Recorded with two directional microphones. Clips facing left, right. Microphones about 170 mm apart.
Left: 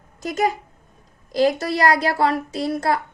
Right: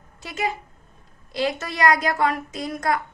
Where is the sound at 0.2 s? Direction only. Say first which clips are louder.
Left 6 dB; 40° left (ahead or behind).